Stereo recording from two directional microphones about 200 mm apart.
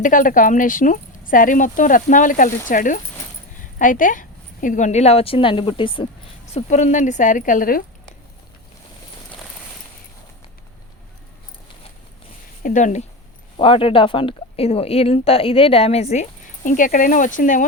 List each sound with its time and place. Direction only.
0.0 s speech: 40° left (ahead or behind)
12.6 s speech: 40° left (ahead or behind)